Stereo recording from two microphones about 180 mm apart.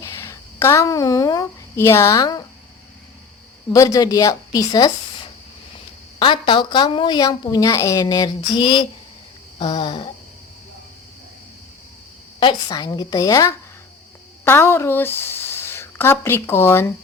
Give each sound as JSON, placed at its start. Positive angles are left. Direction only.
{"t": 0.0, "sound": "speech", "side_deg": 15}
{"t": 3.7, "sound": "a woman's voice", "side_deg": 20}
{"t": 6.1, "sound": "a woman's voice", "side_deg": 30}
{"t": 12.4, "sound": "a woman's voice", "side_deg": 25}